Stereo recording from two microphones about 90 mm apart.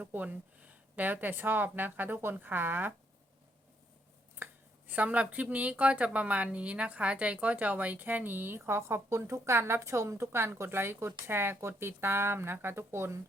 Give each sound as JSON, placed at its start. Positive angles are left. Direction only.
{"t": 0.0, "sound": "a woman's voice", "side_deg": -20}
{"t": 4.4, "sound": "a sound", "side_deg": -25}
{"t": 4.9, "sound": "a woman's voice", "side_deg": -15}